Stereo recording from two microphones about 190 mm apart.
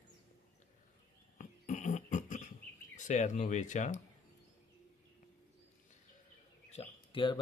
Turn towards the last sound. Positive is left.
turn(degrees=25)  # may be behind; listen again after turning